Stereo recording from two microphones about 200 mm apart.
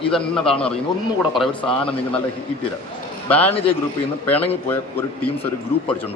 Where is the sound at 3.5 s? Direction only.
30° left (ahead or behind).